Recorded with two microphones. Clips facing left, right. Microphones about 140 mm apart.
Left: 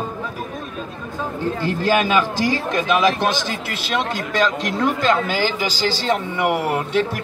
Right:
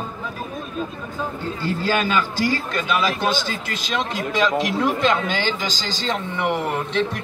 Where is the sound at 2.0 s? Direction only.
15° left (ahead or behind).